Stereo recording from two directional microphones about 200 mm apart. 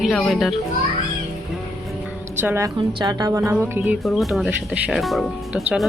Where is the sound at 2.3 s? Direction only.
10° right (ahead or behind).